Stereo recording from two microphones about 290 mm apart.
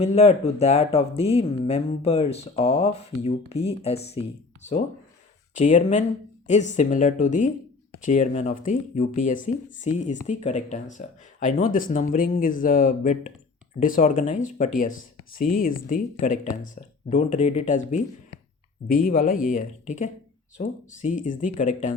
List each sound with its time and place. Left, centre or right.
0.0 s speech: left
5.5 s speech: left
18.9 s speech: left